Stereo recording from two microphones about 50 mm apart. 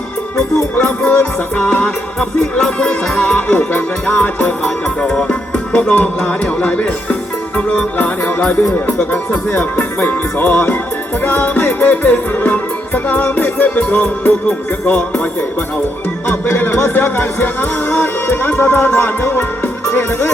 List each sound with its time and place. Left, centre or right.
0.9 s music: left
8.7 s speech: left
11.3 s music: left
14.8 s speech: left
16.3 s speech: left